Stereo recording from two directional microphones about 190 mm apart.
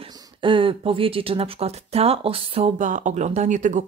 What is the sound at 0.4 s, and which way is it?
Speech, 25° right (ahead or behind).